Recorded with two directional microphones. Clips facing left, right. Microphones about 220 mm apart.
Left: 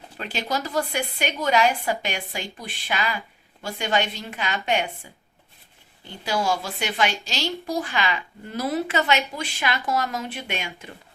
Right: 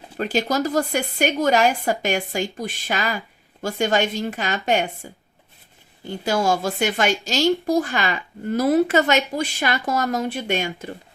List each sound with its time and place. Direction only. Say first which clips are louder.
0.2 s a woman's voice: right 7 dB; 45° right (ahead or behind)
6.2 s a woman's voice: right 4 dB; 45° right (ahead or behind)